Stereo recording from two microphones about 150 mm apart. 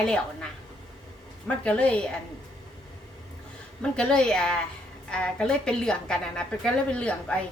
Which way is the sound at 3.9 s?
5° left (ahead or behind).